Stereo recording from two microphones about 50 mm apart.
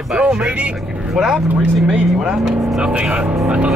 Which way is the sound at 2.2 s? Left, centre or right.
Centre.